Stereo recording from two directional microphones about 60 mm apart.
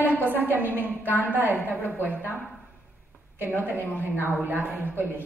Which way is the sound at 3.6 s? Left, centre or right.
Right.